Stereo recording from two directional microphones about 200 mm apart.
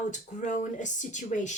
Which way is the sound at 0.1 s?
40° left (ahead or behind).